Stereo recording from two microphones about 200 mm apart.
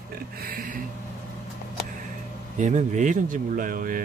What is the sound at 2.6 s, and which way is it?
Speech, 40° right (ahead or behind).